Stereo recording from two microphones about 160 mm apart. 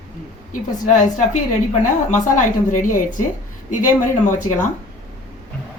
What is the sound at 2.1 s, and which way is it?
A woman's voice, 55° left (ahead or behind).